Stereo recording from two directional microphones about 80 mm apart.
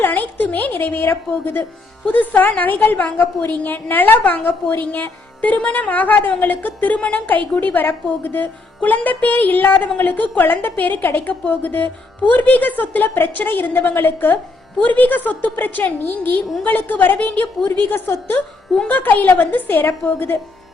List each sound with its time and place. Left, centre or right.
0.0 s a woman's voice: left